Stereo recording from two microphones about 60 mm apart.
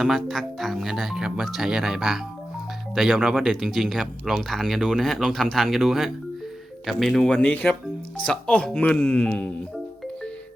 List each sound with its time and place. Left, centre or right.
0.3 s speech: centre
7.3 s speech: centre